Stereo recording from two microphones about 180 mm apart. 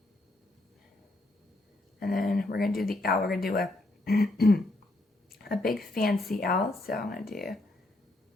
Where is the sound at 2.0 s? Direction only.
55° left (ahead or behind).